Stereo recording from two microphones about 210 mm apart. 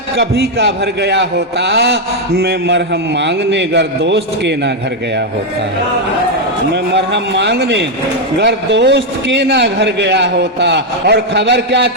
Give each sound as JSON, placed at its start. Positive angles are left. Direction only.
{"t": 0.2, "sound": "a man's voice", "side_deg": -55}
{"t": 6.9, "sound": "a man's voice", "side_deg": -55}